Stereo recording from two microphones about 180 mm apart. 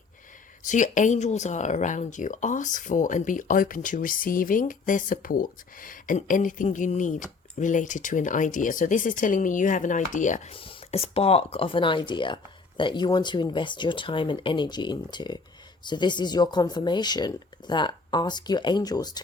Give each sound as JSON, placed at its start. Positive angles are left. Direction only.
{"t": 0.6, "sound": "speech", "side_deg": 45}
{"t": 10.5, "sound": "speech", "side_deg": 30}